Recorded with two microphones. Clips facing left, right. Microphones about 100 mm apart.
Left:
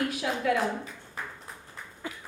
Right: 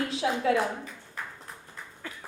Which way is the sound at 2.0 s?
15° left (ahead or behind).